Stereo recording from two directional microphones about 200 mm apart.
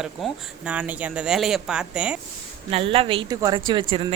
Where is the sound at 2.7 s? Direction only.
30° right (ahead or behind).